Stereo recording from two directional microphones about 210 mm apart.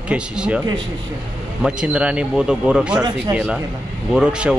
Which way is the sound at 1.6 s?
5° right (ahead or behind).